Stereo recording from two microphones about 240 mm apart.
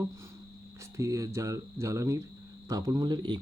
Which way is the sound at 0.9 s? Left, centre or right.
Centre.